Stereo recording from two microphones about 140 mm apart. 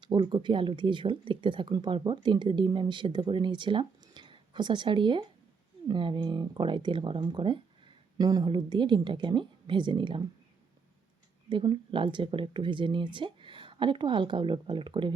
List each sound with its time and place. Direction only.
0.0 s speech: 35° right (ahead or behind)
11.4 s speech: 35° right (ahead or behind)